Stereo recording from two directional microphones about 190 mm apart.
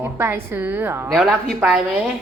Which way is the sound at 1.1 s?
Centre (ahead or behind).